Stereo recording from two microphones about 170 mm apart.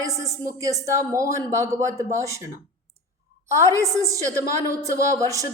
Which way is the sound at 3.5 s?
15° right (ahead or behind).